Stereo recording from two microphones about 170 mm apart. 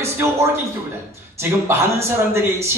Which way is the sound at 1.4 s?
15° right (ahead or behind).